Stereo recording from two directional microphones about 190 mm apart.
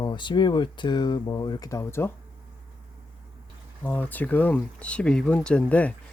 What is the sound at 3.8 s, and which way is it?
Speech, 10° left (ahead or behind).